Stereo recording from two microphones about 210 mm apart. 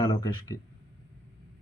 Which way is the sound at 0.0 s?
20° left (ahead or behind).